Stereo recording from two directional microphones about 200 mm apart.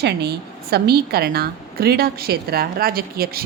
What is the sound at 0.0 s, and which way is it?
A woman's voice, 55° right (ahead or behind).